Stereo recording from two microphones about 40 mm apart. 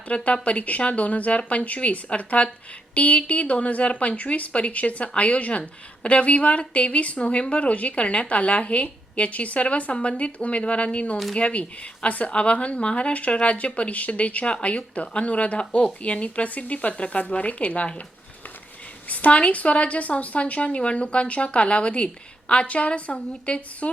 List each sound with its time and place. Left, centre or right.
0.1 s a woman's voice: left
19.0 s speech: left